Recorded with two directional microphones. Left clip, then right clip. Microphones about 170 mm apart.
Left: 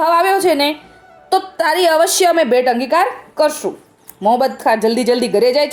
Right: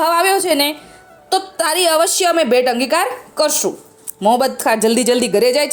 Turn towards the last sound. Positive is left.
turn(degrees=-20)  # may be behind; listen again after turning